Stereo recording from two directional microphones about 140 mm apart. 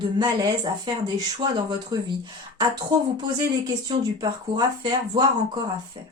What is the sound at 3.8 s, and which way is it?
Speech, 30° right (ahead or behind).